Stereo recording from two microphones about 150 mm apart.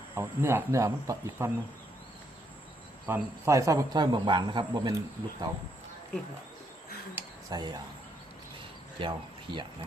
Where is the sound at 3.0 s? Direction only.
15° right (ahead or behind).